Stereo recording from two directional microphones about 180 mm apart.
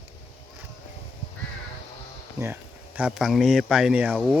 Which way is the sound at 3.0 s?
5° right (ahead or behind).